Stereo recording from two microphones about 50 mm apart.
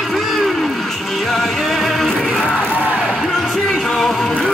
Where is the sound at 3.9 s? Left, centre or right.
Centre.